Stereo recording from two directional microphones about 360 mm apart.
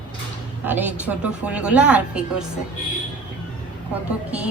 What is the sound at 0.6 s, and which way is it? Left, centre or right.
A woman's voice, centre.